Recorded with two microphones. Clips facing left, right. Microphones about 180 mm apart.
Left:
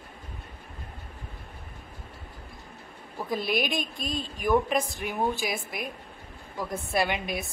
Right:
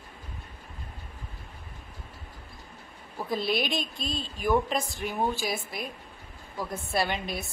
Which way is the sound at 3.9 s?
50° left (ahead or behind).